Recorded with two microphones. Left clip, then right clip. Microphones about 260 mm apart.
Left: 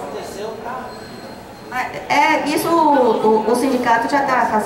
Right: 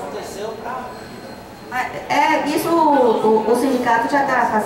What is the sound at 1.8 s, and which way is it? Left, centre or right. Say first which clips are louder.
Speech: left 2 dB; centre.